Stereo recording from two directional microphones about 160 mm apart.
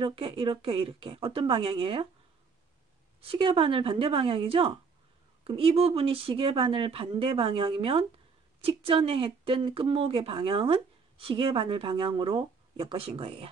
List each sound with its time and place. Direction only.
0.0 s speech: 35° right (ahead or behind)
3.2 s speech: 35° right (ahead or behind)